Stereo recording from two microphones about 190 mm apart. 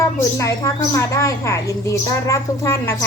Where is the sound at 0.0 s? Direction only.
15° left (ahead or behind).